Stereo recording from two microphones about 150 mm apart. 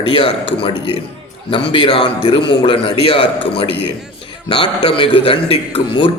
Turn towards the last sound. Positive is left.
turn(degrees=35)  # may be behind; listen again after turning